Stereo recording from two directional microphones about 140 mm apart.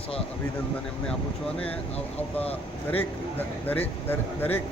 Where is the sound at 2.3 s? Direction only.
10° left (ahead or behind).